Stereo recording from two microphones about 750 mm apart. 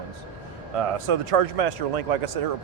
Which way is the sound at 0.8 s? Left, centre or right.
Right.